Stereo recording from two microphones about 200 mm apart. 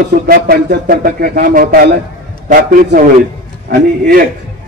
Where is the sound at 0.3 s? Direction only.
45° right (ahead or behind).